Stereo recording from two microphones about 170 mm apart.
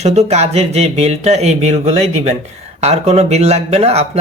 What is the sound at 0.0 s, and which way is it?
Speech, 40° right (ahead or behind).